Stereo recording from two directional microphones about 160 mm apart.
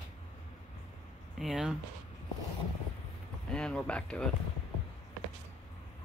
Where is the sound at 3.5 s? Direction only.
5° left (ahead or behind).